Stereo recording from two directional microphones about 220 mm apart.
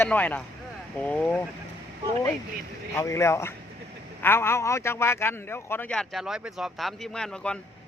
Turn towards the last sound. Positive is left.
turn(degrees=5)  # may be behind; listen again after turning